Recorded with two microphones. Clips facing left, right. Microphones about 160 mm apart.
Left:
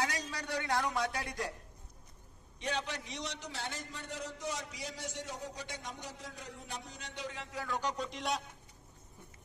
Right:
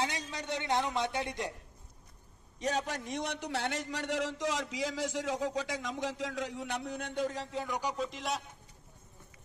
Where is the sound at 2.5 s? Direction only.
40° right (ahead or behind).